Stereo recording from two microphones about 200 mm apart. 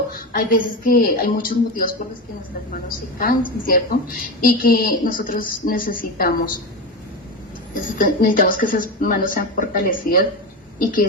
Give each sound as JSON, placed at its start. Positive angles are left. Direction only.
{"t": 0.1, "sound": "a woman's voice", "side_deg": 45}
{"t": 3.2, "sound": "a woman's voice", "side_deg": 45}
{"t": 7.7, "sound": "a woman's voice", "side_deg": 45}